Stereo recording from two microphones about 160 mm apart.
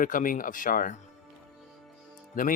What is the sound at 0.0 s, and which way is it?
Speech, 55° left (ahead or behind).